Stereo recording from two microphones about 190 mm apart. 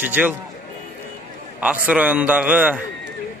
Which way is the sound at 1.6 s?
5° right (ahead or behind).